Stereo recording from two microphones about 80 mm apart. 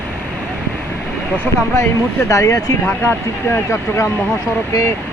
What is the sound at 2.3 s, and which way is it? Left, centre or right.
Speech, left.